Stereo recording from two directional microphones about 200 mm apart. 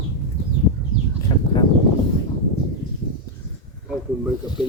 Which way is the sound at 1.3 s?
25° left (ahead or behind).